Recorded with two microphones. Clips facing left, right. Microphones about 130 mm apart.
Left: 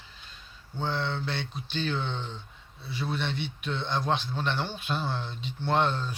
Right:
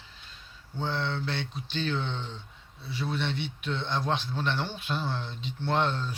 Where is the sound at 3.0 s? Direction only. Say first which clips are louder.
Even; 45° left (ahead or behind).